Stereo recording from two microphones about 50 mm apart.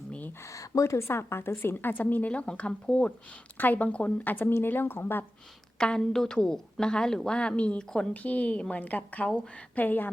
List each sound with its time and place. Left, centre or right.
0.1 s a sound: left
0.5 s a woman's voice: left
3.6 s a woman's voice: left
6.0 s a woman's voice: centre
8.1 s a woman's voice: left
9.7 s speech: left